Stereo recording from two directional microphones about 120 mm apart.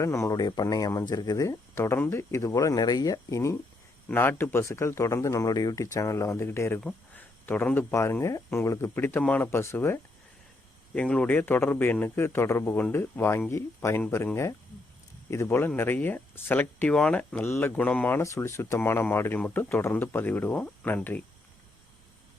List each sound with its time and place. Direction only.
0.0 s speech: 25° left (ahead or behind)
15.3 s speech: 20° left (ahead or behind)
18.2 s speech: 25° left (ahead or behind)